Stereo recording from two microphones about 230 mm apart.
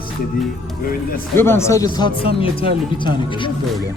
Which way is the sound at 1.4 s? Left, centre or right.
Centre.